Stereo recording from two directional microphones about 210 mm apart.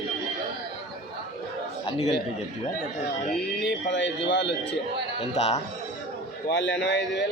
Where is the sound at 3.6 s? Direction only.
55° left (ahead or behind).